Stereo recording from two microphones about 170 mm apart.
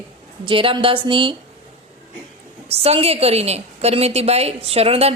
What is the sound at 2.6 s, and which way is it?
A woman's voice, 35° right (ahead or behind).